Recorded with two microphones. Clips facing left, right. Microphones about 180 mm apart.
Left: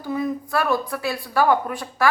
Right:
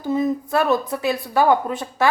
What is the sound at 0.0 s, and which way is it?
A woman's voice, 20° right (ahead or behind).